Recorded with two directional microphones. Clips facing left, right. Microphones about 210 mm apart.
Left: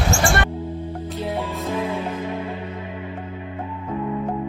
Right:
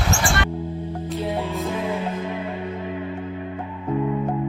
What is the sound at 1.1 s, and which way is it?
Music, centre (ahead or behind).